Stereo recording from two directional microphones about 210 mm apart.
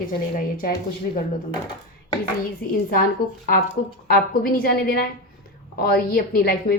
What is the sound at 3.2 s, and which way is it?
A woman's voice, 45° left (ahead or behind).